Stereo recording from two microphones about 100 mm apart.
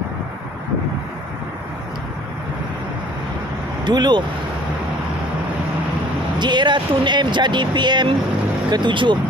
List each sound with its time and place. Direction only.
3.8 s speech: 45° right (ahead or behind)
6.3 s speech: 50° right (ahead or behind)